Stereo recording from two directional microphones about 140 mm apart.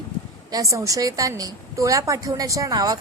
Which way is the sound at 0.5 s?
20° right (ahead or behind).